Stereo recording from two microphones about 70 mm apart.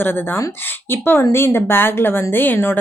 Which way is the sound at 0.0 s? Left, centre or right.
Left.